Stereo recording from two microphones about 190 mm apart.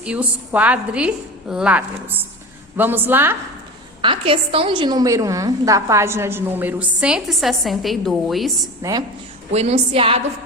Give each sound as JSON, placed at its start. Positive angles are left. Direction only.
{"t": 0.0, "sound": "a woman's voice", "side_deg": -5}
{"t": 4.0, "sound": "a woman's voice", "side_deg": -30}
{"t": 8.8, "sound": "a woman's voice", "side_deg": -20}
{"t": 9.5, "sound": "a woman's voice", "side_deg": -35}